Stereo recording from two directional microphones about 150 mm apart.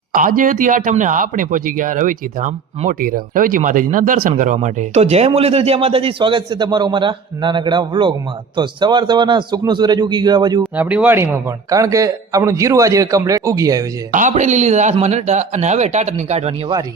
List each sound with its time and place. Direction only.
0.1 s a man's voice: 65° right (ahead or behind); by 10.6 s 30° right (ahead or behind)
10.8 s a man's voice: 10° right (ahead or behind)
14.1 s speech: 55° right (ahead or behind)